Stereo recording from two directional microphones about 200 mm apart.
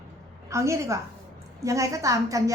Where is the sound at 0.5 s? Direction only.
15° right (ahead or behind).